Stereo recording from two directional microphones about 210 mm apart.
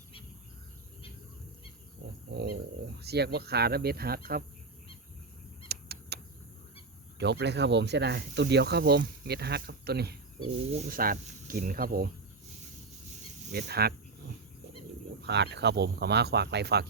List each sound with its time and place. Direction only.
2.3 s speech: 50° right (ahead or behind)
5.6 s a sound: 50° right (ahead or behind)
7.2 s speech: 55° right (ahead or behind)
10.7 s speech: 35° right (ahead or behind)
13.5 s speech: 50° right (ahead or behind)
15.2 s speech: 55° right (ahead or behind)